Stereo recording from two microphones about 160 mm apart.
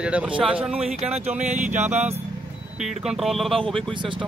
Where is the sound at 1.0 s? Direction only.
40° right (ahead or behind).